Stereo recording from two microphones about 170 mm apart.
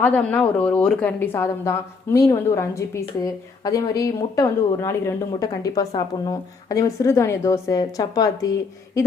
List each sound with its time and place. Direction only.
0.0 s a woman's voice: 10° left (ahead or behind)